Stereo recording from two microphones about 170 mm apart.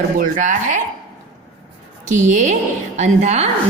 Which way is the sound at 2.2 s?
45° right (ahead or behind).